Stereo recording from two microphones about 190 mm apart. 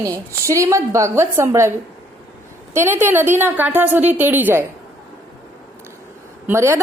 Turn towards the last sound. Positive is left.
turn(degrees=-15)  # may be behind; listen again after turning